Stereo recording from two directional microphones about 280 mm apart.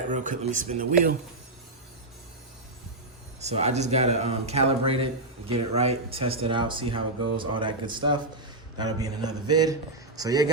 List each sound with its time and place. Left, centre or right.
0.1 s speech: right
3.4 s speech: right